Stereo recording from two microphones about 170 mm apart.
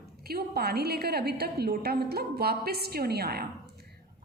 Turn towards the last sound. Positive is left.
turn(degrees=-70)  # may be behind; listen again after turning